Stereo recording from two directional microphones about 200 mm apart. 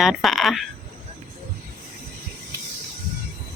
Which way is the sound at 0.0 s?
Centre (ahead or behind).